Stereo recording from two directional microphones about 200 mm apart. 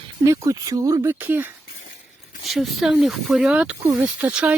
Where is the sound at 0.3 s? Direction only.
15° right (ahead or behind).